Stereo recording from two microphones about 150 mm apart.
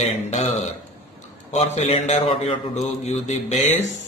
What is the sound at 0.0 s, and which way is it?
Speech, 45° left (ahead or behind).